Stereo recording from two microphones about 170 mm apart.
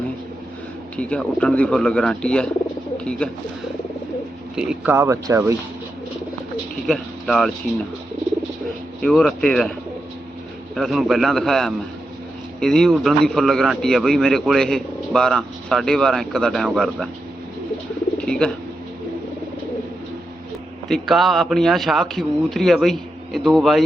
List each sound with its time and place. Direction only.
0.9 s a man's voice: 5° left (ahead or behind)
4.5 s speech: 5° right (ahead or behind)
6.8 s speech: centre (ahead or behind)
9.0 s a man's voice: 5° left (ahead or behind)
10.8 s a man's voice: centre (ahead or behind)
18.2 s speech: 5° left (ahead or behind)
20.8 s a man's voice: centre (ahead or behind)